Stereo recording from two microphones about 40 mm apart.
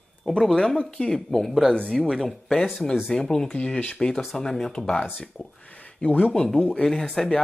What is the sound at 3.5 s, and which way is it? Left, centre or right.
Speech, left.